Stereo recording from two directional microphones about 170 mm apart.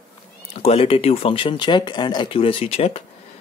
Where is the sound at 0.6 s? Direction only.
35° left (ahead or behind).